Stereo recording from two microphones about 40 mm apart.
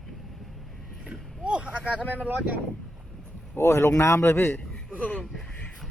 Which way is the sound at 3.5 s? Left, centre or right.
Left.